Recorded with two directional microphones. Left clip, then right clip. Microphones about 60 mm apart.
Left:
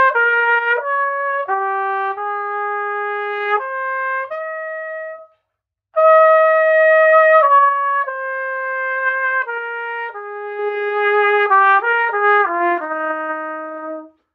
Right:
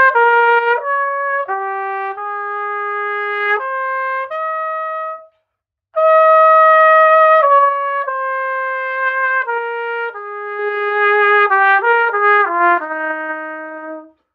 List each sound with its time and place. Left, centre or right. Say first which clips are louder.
0.0 s trumpet: right 3 dB; right
5.9 s trumpet: right 1 dB; right
10.6 s trumpet: right 3 dB; right